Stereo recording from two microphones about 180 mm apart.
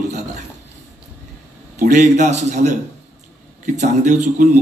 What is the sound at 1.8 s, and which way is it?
Speech, 45° right (ahead or behind).